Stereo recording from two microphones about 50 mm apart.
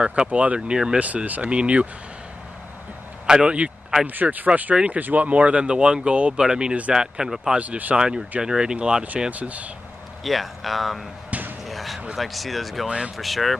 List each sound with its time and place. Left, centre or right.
0.0 s speech: right
0.6 s speech: centre
0.9 s speech: right
3.3 s speech: centre
4.1 s speech: right; by 7.5 s centre
7.5 s speech: right
8.0 s speech: centre
9.3 s speech: right
10.2 s speech: centre
11.6 s basketball bounce: centre
12.2 s speech: centre
12.8 s speech: centre
13.2 s speech: centre